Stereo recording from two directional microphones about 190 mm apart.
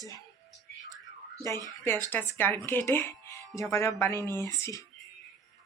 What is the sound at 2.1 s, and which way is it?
A woman's voice, 10° left (ahead or behind).